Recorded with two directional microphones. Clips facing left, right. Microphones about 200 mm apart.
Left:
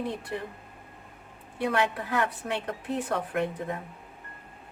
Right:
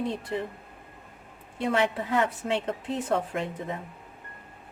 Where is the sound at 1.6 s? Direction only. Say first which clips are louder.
Right 1 dB; 25° right (ahead or behind).